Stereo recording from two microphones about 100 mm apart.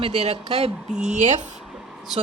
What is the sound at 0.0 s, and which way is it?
Speech, 90° right.